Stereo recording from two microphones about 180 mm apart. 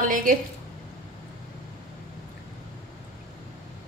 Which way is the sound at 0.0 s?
50° right (ahead or behind).